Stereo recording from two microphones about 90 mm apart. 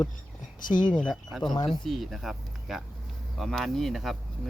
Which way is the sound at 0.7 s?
60° left (ahead or behind).